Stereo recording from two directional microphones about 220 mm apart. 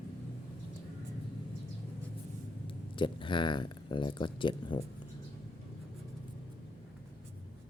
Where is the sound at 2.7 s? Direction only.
20° left (ahead or behind).